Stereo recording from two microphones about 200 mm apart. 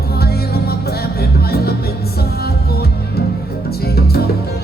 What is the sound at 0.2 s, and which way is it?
Music, 50° left (ahead or behind).